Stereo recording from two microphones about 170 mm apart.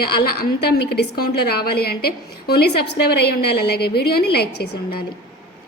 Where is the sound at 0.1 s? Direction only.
65° left (ahead or behind).